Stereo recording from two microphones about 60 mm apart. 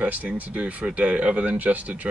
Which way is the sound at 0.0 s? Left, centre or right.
Right.